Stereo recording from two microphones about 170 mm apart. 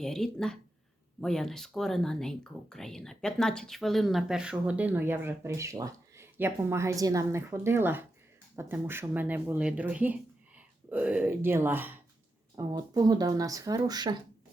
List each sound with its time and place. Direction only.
0.0 s speech: 5° left (ahead or behind)
12.5 s speech: 20° right (ahead or behind)